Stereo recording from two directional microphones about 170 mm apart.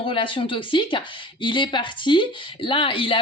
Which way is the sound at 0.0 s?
30° left (ahead or behind).